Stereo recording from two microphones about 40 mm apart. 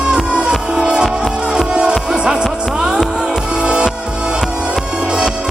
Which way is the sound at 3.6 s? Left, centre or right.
Right.